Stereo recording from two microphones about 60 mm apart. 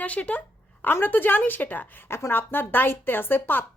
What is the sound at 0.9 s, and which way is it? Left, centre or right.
A woman's voice, left.